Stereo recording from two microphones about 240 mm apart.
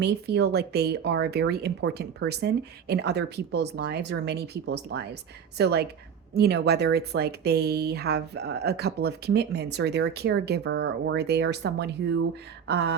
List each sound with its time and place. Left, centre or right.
0.0 s speech: right